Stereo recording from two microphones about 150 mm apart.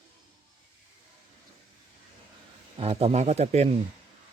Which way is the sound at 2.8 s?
40° right (ahead or behind).